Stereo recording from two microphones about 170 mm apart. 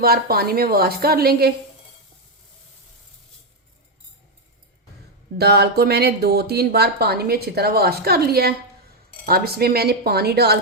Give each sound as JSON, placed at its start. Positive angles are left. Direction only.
{"t": 0.0, "sound": "a woman's voice", "side_deg": -65}
{"t": 5.4, "sound": "speech", "side_deg": -70}